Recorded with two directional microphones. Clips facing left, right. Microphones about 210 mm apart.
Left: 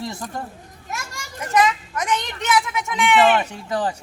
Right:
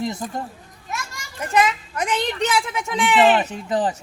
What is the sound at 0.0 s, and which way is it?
Speech, 20° right (ahead or behind).